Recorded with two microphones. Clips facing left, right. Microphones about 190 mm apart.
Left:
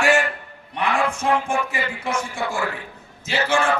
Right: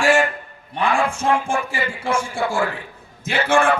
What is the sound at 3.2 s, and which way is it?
Speech, 55° right (ahead or behind).